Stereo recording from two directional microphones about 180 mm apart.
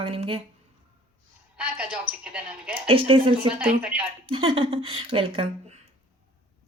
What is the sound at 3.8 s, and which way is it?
Speech, 5° right (ahead or behind).